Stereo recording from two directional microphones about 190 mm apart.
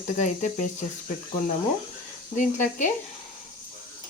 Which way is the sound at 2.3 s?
40° left (ahead or behind).